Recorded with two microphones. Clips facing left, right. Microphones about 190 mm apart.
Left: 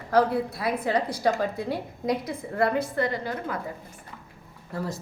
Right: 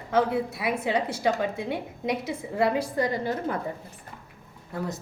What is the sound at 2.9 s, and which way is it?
Speech, 20° right (ahead or behind).